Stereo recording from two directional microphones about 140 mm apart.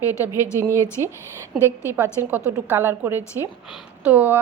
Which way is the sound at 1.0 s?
20° right (ahead or behind).